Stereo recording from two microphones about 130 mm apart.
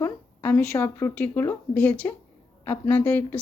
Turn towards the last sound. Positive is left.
turn(degrees=15)  # may be behind; listen again after turning